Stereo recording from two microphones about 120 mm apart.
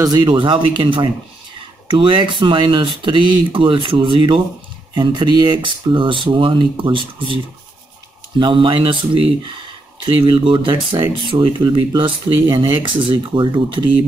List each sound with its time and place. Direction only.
0.0 s speech: 35° right (ahead or behind)
8.4 s speech: 45° right (ahead or behind)
12.4 s speech: 20° right (ahead or behind)
12.8 s speech: 45° right (ahead or behind)